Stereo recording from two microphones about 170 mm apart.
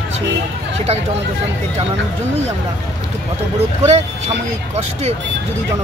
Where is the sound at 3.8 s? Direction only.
40° right (ahead or behind).